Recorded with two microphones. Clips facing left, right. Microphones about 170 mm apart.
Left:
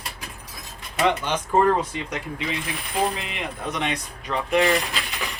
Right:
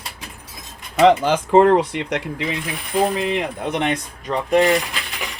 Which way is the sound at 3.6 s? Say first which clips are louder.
Right 6 dB; 55° right (ahead or behind).